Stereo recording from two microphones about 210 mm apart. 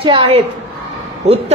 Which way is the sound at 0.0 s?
25° right (ahead or behind).